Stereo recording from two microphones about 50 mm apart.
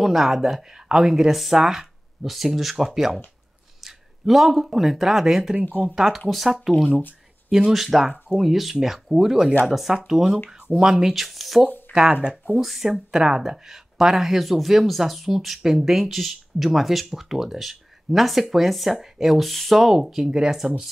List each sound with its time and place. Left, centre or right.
0.0 s speech: centre
6.9 s speech: left
7.5 s speech: centre
12.1 s speech: right
12.4 s speech: centre
13.1 s speech: centre